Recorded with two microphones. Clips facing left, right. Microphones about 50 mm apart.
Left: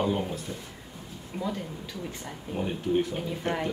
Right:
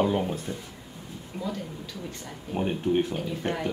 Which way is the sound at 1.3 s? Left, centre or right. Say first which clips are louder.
Left 1 dB; centre.